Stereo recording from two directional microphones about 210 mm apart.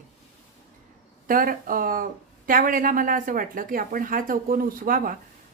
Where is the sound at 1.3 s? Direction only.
40° right (ahead or behind).